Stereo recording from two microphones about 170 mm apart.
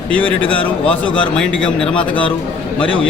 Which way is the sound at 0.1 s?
5° left (ahead or behind).